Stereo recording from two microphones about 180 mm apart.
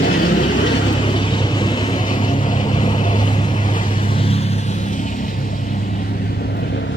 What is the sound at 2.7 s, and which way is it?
Vehicle, 25° left (ahead or behind).